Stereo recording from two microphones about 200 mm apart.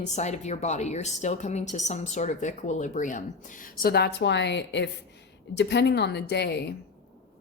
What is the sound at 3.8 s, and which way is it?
A woman's voice, 50° left (ahead or behind).